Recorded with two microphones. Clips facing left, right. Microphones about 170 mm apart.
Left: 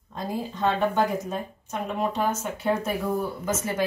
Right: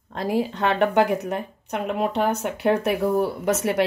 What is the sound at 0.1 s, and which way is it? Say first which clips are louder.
A woman's voice: right 7 dB; 75° right (ahead or behind).